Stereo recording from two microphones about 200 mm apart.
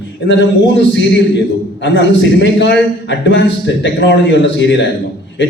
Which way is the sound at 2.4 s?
60° left (ahead or behind).